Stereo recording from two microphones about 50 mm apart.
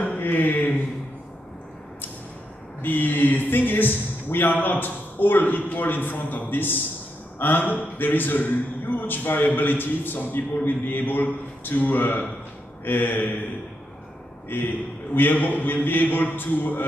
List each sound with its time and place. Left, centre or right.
0.0 s a sound: left
2.8 s speech: left
14.5 s speech: left